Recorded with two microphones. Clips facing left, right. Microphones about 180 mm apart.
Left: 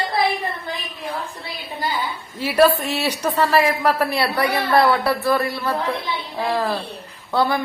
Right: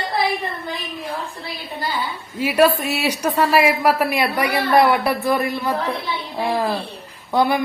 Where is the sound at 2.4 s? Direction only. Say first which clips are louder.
Even; 10° right (ahead or behind).